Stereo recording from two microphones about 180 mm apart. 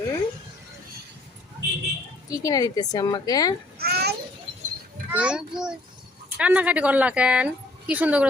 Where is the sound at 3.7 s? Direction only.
60° right (ahead or behind).